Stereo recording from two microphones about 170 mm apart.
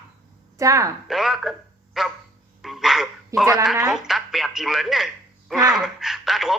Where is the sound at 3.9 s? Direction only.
Centre (ahead or behind).